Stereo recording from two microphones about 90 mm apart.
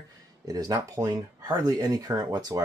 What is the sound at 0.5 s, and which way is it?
Speech, 40° right (ahead or behind).